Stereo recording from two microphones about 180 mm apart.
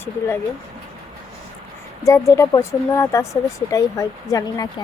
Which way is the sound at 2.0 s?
15° left (ahead or behind).